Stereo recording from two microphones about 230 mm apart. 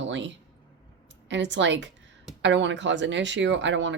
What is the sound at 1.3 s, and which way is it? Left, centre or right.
Speech, right.